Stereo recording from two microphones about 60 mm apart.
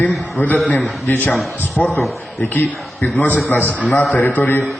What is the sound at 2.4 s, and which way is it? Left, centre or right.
A man's voice, left.